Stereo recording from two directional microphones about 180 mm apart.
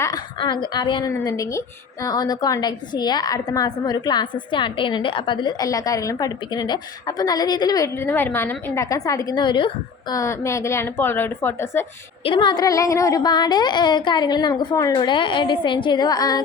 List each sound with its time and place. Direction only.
0.3 s a woman's voice: 25° left (ahead or behind)
12.2 s a woman's voice: 25° left (ahead or behind)